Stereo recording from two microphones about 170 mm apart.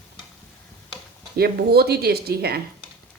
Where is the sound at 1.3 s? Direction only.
65° right (ahead or behind).